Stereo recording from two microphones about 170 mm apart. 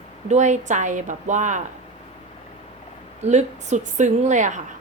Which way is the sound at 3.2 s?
45° right (ahead or behind).